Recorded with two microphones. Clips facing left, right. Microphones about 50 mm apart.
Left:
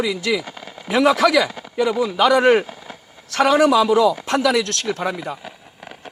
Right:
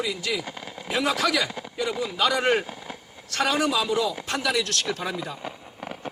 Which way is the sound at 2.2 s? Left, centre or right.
Left.